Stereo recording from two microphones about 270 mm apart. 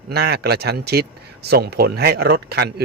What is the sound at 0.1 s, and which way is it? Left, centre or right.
Speech, right.